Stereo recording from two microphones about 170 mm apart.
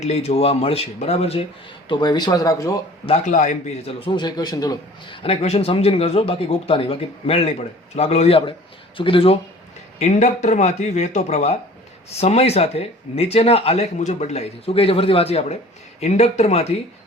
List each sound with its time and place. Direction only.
0.0 s a man's voice: 40° left (ahead or behind)
1.9 s speech: 25° left (ahead or behind)
3.1 s a man's voice: 50° left (ahead or behind)
3.8 s a man's voice: 30° left (ahead or behind)